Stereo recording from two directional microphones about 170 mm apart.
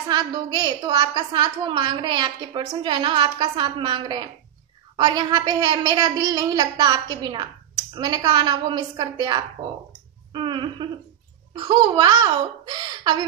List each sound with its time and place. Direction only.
0.1 s a woman's voice: 25° right (ahead or behind)
10.3 s a sound: 30° right (ahead or behind)
11.5 s a woman's voice: 30° right (ahead or behind)